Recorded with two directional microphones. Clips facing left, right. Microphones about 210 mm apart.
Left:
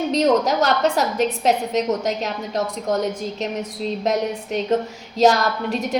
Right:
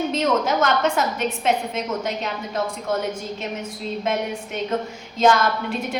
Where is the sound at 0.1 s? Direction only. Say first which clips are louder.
Left 3 dB; 35° left (ahead or behind).